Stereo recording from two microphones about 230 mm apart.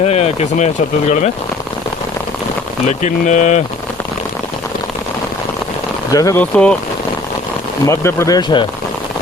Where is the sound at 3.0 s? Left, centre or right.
Left.